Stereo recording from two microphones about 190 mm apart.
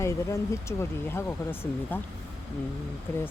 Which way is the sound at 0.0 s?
15° left (ahead or behind).